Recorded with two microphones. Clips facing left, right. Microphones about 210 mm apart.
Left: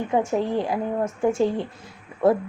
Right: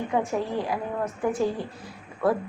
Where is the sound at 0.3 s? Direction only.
25° left (ahead or behind).